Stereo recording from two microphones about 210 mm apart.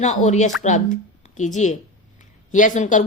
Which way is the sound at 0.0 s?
35° left (ahead or behind).